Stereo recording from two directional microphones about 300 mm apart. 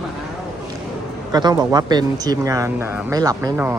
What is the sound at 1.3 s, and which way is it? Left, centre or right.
Speech, centre.